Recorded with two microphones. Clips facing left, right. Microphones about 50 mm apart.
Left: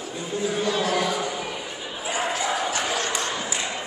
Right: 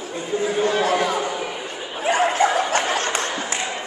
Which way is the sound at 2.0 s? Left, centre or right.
Right.